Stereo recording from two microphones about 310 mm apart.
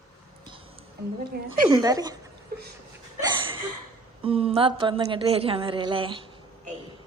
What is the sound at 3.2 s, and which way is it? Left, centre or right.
Hiccup, centre.